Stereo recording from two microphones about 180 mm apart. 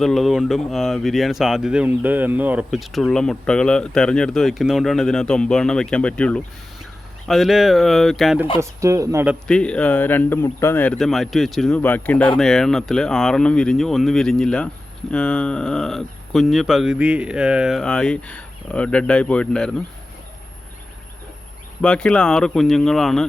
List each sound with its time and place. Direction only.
0.0 s speech: centre (ahead or behind)
8.5 s speech: 15° right (ahead or behind)
9.5 s speech: 5° left (ahead or behind)
21.8 s speech: 5° left (ahead or behind)